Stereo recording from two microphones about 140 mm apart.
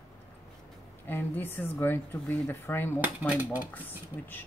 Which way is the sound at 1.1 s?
15° left (ahead or behind).